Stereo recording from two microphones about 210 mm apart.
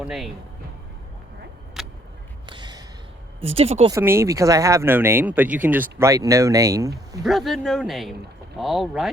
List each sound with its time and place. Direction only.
0.0 s speech: centre (ahead or behind)
1.8 s vehicle: centre (ahead or behind)
2.5 s a sound: 20° right (ahead or behind)
3.4 s speech: 30° right (ahead or behind)
3.9 s speech: 10° right (ahead or behind)
7.3 s speech: centre (ahead or behind)